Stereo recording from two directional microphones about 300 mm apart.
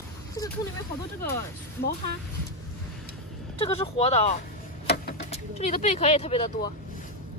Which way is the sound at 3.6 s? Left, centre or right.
Centre.